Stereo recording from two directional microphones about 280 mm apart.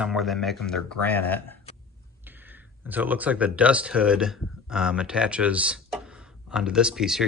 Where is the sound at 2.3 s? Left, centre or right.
Centre.